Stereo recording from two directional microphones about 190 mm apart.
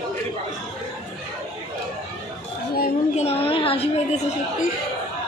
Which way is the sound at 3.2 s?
30° left (ahead or behind).